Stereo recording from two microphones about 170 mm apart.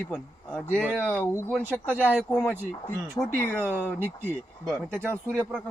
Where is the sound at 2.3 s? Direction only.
10° left (ahead or behind).